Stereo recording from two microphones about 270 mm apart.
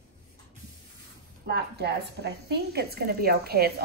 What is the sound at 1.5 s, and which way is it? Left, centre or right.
A woman's voice, right.